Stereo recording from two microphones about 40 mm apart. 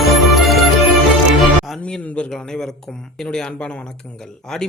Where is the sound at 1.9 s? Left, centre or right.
Left.